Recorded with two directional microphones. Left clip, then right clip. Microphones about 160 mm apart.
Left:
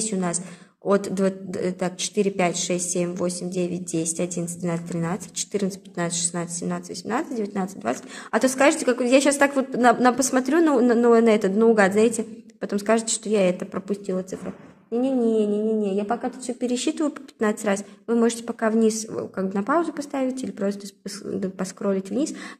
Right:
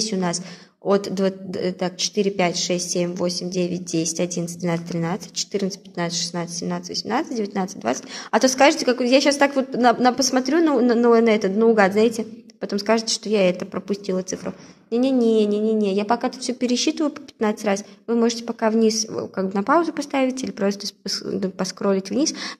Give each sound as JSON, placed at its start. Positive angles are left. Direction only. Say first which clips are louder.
{"t": 0.0, "sound": "a woman's voice", "louder": "right 3 dB", "side_deg": -10}
{"t": 14.9, "sound": "a woman's voice", "louder": "right 3 dB", "side_deg": -30}
{"t": 16.7, "sound": "a woman's voice", "louder": "right 3 dB", "side_deg": -10}